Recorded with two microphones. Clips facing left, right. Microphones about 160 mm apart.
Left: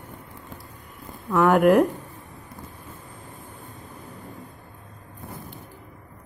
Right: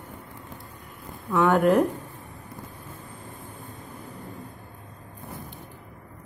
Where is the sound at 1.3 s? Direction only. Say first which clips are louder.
Left 2 dB; 5° left (ahead or behind).